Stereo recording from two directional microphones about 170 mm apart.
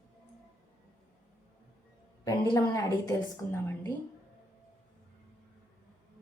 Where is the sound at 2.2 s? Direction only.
25° left (ahead or behind).